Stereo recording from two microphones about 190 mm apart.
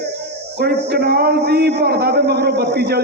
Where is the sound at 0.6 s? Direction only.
55° right (ahead or behind).